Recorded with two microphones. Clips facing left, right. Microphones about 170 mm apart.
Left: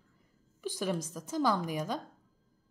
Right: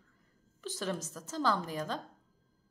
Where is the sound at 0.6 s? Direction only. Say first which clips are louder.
Left 3 dB; 10° left (ahead or behind).